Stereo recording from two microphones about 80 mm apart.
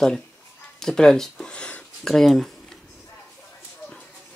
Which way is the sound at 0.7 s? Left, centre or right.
Centre.